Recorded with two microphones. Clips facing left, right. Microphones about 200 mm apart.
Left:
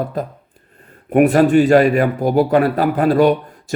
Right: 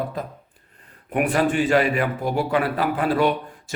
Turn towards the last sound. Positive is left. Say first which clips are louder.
# left 7 dB
turn(degrees=40)  # may be behind; listen again after turning